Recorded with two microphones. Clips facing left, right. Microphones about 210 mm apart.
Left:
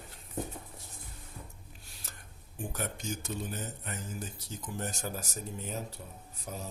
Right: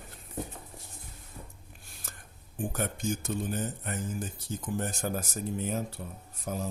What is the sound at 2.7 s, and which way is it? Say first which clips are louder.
Speech: right 5 dB; 50° right (ahead or behind).